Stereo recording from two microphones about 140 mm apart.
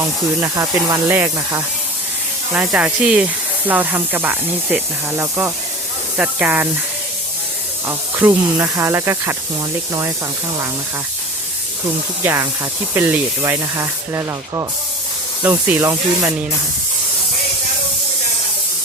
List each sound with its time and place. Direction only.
0.0 s speech: 20° right (ahead or behind)
7.9 s speech: 15° right (ahead or behind)
12.2 s speech: 20° right (ahead or behind)